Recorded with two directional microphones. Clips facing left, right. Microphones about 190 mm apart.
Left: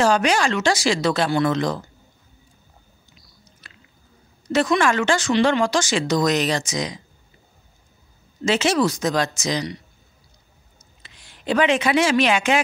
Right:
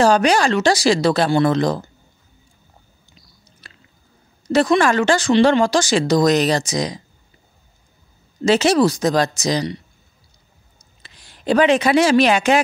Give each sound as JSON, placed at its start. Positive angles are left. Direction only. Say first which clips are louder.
{"t": 0.0, "sound": "speech", "louder": "right 4 dB", "side_deg": -35}
{"t": 3.6, "sound": "squish", "louder": "right 3 dB", "side_deg": -35}
{"t": 4.5, "sound": "speech", "louder": "right 4 dB", "side_deg": -35}
{"t": 8.5, "sound": "speech", "louder": "right 5 dB", "side_deg": -35}
{"t": 10.8, "sound": "a woman's voice", "louder": "right 1 dB", "side_deg": -35}